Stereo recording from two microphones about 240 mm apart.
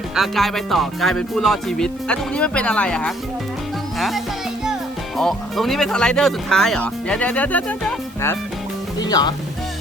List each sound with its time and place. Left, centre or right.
0.2 s speech: centre